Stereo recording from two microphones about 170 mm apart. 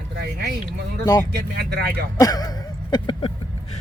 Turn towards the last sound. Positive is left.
turn(degrees=25)  # may be behind; listen again after turning